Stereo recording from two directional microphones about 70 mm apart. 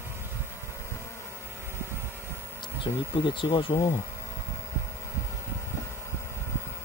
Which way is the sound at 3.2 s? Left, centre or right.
Left.